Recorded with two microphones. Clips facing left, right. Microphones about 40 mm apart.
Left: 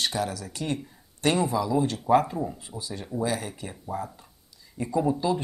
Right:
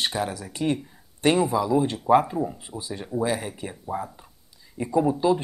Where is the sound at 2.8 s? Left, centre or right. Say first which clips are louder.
Right 3 dB; centre.